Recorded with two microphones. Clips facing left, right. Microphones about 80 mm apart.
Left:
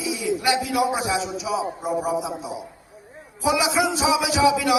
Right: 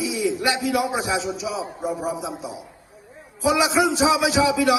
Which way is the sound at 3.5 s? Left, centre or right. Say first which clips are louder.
Right 2 dB; right.